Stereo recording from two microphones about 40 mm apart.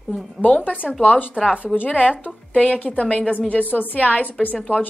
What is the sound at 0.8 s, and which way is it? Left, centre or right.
Speech, centre.